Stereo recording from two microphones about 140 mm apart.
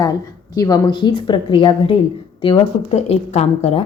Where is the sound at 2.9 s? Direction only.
55° left (ahead or behind).